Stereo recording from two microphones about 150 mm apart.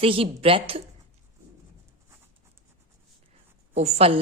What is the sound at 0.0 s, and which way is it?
Speech, 40° right (ahead or behind).